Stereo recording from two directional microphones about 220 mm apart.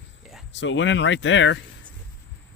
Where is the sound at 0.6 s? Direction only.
55° left (ahead or behind).